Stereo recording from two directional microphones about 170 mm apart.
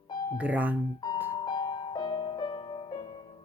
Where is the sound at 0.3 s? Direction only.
10° right (ahead or behind).